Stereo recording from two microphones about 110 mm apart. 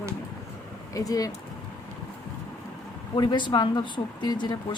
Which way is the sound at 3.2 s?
45° left (ahead or behind).